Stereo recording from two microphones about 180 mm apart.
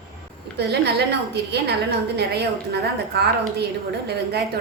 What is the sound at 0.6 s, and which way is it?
A woman's voice, 65° right (ahead or behind).